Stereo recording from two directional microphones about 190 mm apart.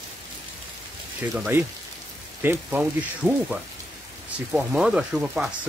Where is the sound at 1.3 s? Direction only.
10° right (ahead or behind).